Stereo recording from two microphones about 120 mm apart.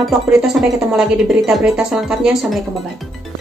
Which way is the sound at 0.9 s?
Centre (ahead or behind).